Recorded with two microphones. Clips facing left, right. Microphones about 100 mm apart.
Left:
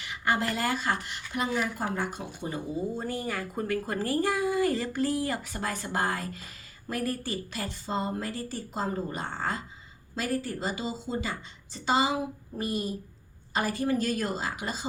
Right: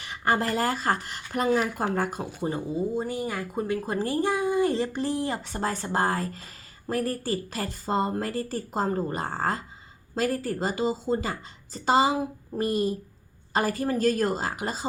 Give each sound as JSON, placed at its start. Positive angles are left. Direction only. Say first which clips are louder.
{"t": 0.0, "sound": "speech", "louder": "right 3 dB", "side_deg": -35}
{"t": 2.7, "sound": "speech", "louder": "right 4 dB", "side_deg": -15}